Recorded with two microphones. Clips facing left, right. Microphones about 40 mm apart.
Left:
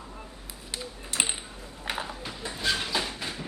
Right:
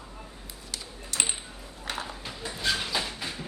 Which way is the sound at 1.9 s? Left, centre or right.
Centre.